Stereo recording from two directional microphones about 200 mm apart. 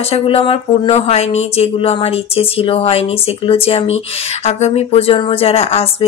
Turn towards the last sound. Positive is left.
turn(degrees=30)  # may be behind; listen again after turning